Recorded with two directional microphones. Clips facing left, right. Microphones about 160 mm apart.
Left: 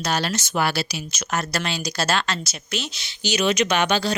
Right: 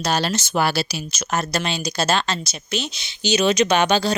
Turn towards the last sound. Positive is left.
turn(degrees=-30)  # may be behind; listen again after turning